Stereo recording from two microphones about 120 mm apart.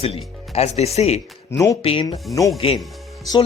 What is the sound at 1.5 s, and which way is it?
Speech, 30° left (ahead or behind).